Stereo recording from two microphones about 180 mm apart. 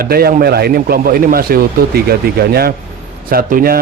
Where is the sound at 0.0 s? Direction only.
60° right (ahead or behind).